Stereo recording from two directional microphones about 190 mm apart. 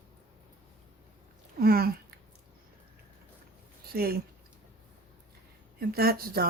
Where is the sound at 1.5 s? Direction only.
55° right (ahead or behind).